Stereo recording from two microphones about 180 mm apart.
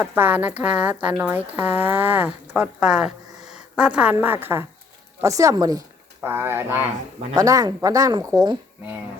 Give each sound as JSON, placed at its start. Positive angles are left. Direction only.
{"t": 0.0, "sound": "speech", "side_deg": -10}